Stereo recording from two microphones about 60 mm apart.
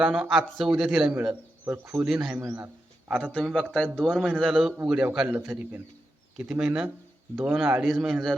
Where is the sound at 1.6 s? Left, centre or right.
Right.